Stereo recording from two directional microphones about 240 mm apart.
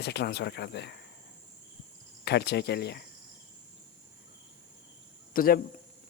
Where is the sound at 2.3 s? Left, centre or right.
Left.